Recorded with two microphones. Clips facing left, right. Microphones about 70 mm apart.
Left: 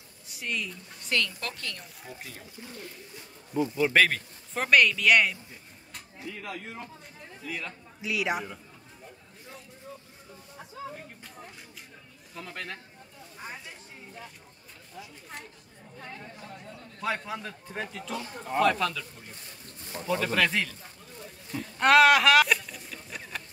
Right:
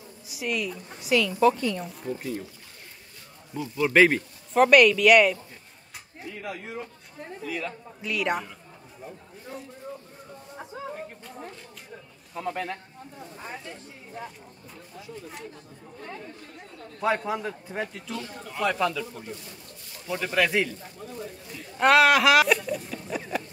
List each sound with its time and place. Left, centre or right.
0.3 s a woman's voice: centre
3.5 s speech: centre
3.9 s a woman's voice: centre
4.6 s speech: centre
12.4 s a woman's voice: centre
17.3 s a woman's voice: centre
20.1 s a woman's voice: centre
21.5 s speech: centre
23.3 s a sound: centre